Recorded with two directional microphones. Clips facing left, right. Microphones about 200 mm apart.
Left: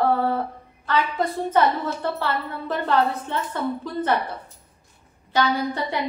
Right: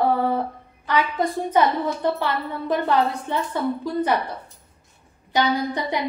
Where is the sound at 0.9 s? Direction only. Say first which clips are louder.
Right 1 dB; 15° right (ahead or behind).